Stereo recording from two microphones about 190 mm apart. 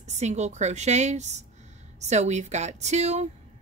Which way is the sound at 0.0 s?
35° right (ahead or behind).